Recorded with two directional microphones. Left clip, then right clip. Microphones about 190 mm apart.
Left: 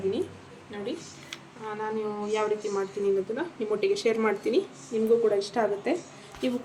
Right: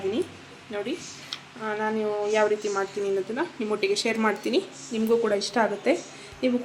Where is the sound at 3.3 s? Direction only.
25° right (ahead or behind).